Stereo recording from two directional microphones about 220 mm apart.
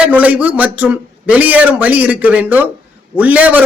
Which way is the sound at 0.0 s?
5° right (ahead or behind).